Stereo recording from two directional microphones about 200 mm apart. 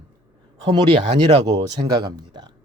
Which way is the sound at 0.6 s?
25° right (ahead or behind).